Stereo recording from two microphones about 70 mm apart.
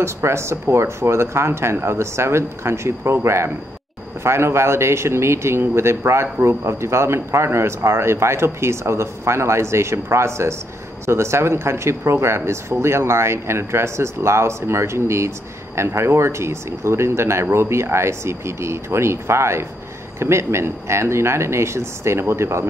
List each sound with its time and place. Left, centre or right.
0.0 s speech: right